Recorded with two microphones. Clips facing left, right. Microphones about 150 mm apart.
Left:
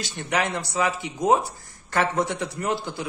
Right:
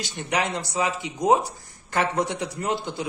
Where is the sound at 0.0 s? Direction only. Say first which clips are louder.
Even; 15° right (ahead or behind).